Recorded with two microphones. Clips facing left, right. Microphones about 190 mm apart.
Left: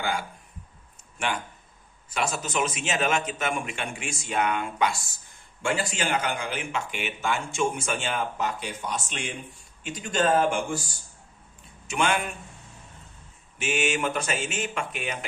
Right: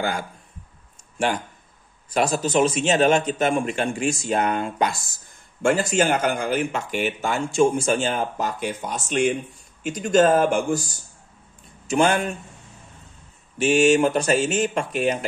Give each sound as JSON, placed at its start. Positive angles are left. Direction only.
{"t": 1.1, "sound": "speech", "side_deg": -35}
{"t": 11.9, "sound": "speech", "side_deg": -35}
{"t": 13.6, "sound": "speech", "side_deg": -35}